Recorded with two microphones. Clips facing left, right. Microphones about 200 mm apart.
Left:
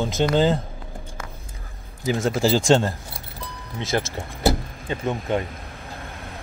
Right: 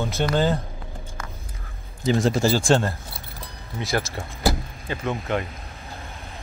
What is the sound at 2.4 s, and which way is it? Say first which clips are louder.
Speech: left 2 dB; 20° left (ahead or behind).